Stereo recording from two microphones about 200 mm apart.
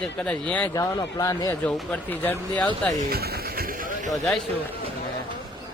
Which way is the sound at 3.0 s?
50° right (ahead or behind).